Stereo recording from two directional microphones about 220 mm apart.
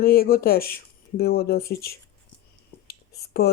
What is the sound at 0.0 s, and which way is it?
Speech, 45° left (ahead or behind).